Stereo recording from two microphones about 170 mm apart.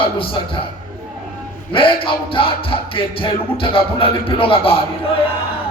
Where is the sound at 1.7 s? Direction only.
30° left (ahead or behind).